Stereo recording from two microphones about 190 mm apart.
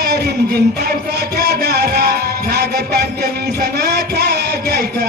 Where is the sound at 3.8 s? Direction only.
55° right (ahead or behind).